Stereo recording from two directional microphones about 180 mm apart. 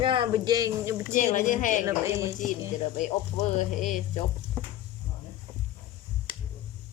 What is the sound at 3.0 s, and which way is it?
Speech, 40° left (ahead or behind).